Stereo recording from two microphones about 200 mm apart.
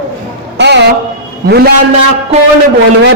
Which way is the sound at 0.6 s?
60° right (ahead or behind).